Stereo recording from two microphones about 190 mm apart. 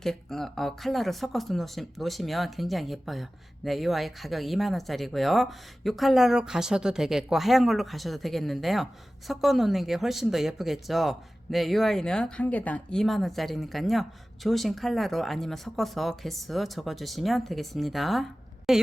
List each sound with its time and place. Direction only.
0.0 s speech: centre (ahead or behind)